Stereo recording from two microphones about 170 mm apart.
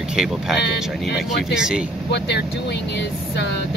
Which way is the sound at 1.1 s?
90° left.